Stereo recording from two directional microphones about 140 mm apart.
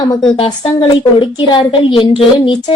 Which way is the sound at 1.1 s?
35° left (ahead or behind).